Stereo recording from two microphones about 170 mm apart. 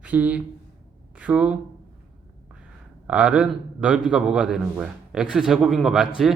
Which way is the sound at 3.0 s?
5° right (ahead or behind).